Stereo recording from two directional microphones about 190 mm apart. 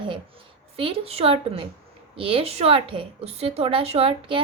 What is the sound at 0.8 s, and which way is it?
A woman's voice, 30° right (ahead or behind).